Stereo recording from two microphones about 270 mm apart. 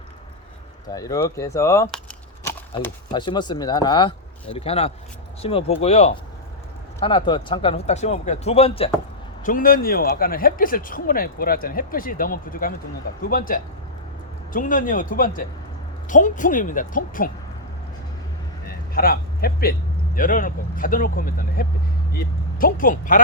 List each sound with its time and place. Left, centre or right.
0.9 s speech: centre; by 17.2 s left
18.9 s a man's voice: left